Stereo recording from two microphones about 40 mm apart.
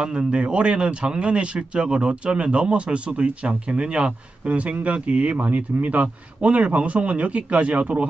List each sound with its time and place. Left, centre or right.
0.3 s speech: right